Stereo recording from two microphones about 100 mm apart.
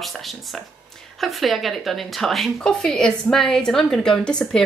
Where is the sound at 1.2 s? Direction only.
Centre (ahead or behind).